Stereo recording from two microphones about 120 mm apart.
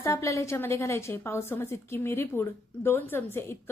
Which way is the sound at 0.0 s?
25° left (ahead or behind).